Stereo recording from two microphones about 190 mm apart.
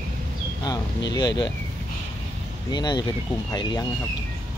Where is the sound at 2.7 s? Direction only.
20° left (ahead or behind).